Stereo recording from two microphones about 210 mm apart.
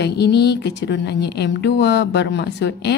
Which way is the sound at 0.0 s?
55° left (ahead or behind).